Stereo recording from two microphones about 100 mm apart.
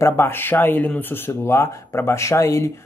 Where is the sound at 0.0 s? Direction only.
25° left (ahead or behind).